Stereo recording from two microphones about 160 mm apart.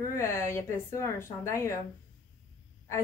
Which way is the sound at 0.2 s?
15° left (ahead or behind).